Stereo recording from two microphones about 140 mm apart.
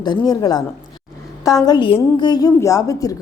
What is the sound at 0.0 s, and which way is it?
A woman's voice, 30° left (ahead or behind).